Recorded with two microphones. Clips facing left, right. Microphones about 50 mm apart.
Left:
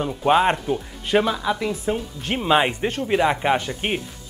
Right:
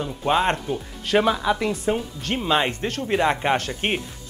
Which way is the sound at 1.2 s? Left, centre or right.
Centre.